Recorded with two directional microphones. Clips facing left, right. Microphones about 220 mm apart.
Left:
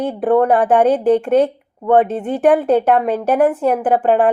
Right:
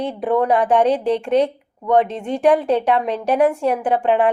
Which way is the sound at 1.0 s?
50° left (ahead or behind).